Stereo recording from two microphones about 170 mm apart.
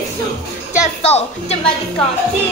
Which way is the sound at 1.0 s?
40° left (ahead or behind).